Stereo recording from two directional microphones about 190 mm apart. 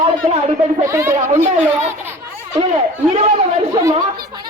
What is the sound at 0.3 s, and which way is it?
Speech, 35° right (ahead or behind).